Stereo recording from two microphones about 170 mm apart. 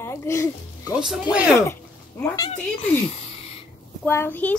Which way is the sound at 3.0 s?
35° left (ahead or behind).